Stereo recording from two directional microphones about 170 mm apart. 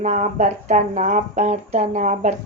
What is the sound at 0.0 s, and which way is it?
Speech, 45° right (ahead or behind).